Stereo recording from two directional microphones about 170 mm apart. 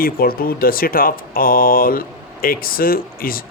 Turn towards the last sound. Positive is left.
turn(degrees=60)  # may be behind; listen again after turning